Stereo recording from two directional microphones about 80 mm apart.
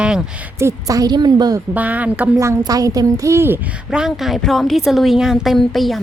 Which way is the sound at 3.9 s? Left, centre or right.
Centre.